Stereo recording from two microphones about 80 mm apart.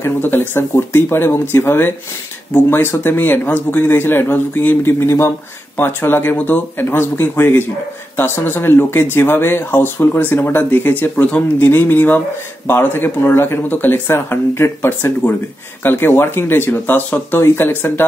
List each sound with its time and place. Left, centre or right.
0.0 s speech: left